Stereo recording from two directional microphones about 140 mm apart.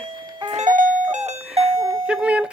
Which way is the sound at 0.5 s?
65° right (ahead or behind).